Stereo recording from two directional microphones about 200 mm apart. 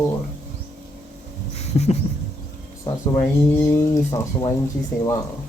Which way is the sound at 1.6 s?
35° left (ahead or behind).